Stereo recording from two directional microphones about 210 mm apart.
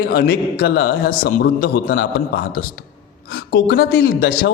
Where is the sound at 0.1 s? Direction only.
45° left (ahead or behind).